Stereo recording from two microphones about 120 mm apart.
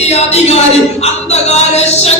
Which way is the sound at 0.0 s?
65° left (ahead or behind).